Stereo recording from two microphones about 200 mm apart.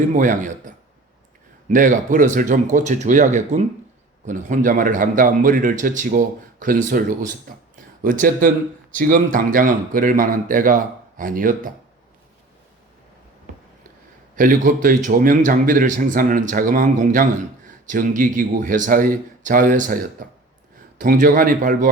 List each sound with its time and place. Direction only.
0.1 s a man's voice: 40° right (ahead or behind)
1.7 s a man's voice: 40° right (ahead or behind)
14.3 s a man's voice: 45° right (ahead or behind)